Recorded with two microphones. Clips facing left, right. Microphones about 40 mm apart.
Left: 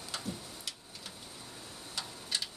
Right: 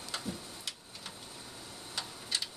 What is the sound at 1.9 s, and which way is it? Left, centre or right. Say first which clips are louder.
Tick-tock: even; centre.